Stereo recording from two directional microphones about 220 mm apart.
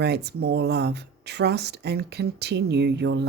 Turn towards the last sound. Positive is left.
turn(degrees=-50)  # may be behind; listen again after turning